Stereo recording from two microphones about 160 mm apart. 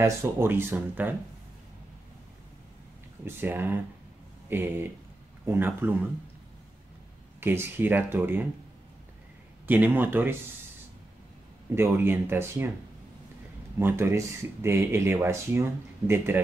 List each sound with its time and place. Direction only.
0.0 s speech: 15° right (ahead or behind)
3.3 s speech: 15° right (ahead or behind)
7.3 s speech: 15° right (ahead or behind)
9.7 s speech: 10° right (ahead or behind)
11.7 s speech: 15° right (ahead or behind)
13.7 s speech: 15° right (ahead or behind)